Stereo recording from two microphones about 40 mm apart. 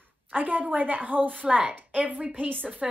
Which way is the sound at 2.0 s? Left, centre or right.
Right.